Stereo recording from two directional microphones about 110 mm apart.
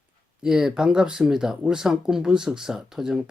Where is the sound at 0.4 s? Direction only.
5° right (ahead or behind).